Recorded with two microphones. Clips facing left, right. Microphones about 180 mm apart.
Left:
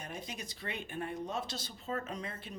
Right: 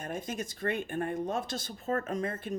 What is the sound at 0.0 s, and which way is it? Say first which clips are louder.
A woman's voice: right 7 dB; 50° right (ahead or behind).